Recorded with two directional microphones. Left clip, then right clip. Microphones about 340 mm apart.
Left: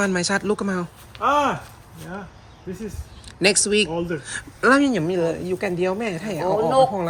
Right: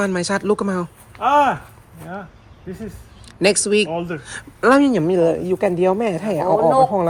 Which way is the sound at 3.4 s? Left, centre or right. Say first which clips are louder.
Right 2 dB; centre.